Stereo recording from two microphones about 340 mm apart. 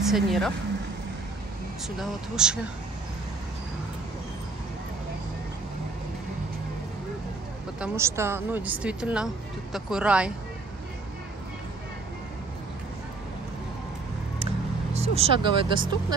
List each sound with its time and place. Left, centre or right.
0.0 s speech: centre
2.0 s speech: centre
7.8 s speech: centre
15.0 s speech: centre